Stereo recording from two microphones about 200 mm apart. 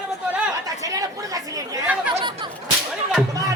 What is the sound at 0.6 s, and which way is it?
Chatter, 15° right (ahead or behind).